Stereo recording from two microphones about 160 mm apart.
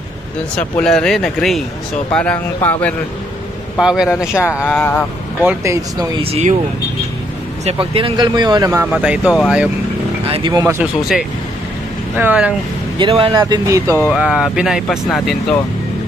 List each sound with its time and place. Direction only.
0.6 s speech: 5° left (ahead or behind)
3.7 s speech: 5° right (ahead or behind)
4.4 s speech: 15° left (ahead or behind)
5.4 s speech: 15° right (ahead or behind)
7.6 s speech: 35° right (ahead or behind); by 9.0 s 15° right (ahead or behind)
9.0 s speech: 5° right (ahead or behind)
10.2 s vehicle: 35° right (ahead or behind)
10.5 s speech: 20° right (ahead or behind)
10.8 s speech: 5° right (ahead or behind)
12.9 s speech: 30° right (ahead or behind)
13.8 s speech: 15° left (ahead or behind)
14.1 s speech: 5° right (ahead or behind)